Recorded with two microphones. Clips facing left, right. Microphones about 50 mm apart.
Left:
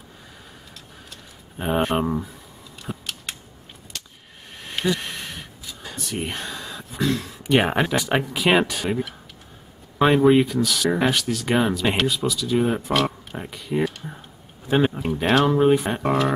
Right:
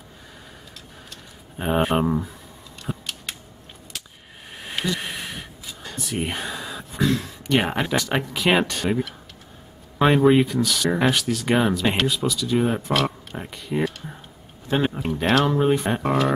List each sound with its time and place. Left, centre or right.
1.1 s speech: centre
2.8 s a sound: centre
7.4 s speech: centre